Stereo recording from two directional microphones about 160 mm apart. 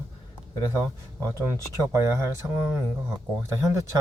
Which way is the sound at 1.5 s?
15° right (ahead or behind).